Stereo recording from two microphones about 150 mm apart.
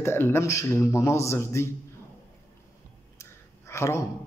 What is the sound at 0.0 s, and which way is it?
A man's voice, 15° left (ahead or behind).